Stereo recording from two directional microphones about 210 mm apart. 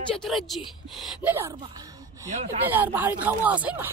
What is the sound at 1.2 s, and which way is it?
Speech, 10° right (ahead or behind).